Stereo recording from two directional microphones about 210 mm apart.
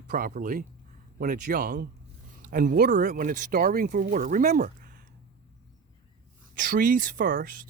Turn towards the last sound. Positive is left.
turn(degrees=-40)  # may be behind; listen again after turning